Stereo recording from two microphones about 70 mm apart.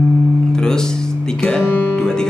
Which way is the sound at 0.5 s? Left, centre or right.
Centre.